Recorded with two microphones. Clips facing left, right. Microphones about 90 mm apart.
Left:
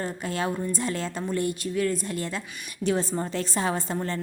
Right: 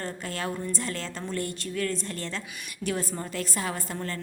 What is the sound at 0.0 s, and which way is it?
A woman's voice, 20° left (ahead or behind).